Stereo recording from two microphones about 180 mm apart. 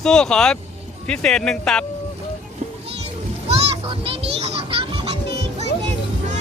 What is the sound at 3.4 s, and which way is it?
Children playing, 30° right (ahead or behind).